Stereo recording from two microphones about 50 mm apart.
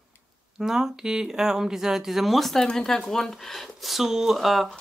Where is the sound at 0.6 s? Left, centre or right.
Centre.